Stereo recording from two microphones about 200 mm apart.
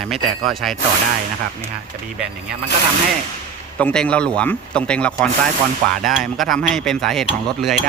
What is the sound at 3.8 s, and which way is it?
Speech, 5° left (ahead or behind).